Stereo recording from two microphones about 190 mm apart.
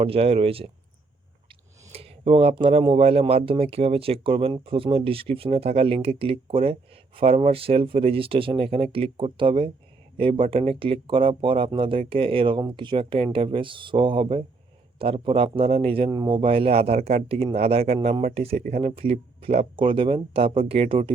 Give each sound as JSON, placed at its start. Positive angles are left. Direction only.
{"t": 0.0, "sound": "speech", "side_deg": -30}
{"t": 1.9, "sound": "speech", "side_deg": -30}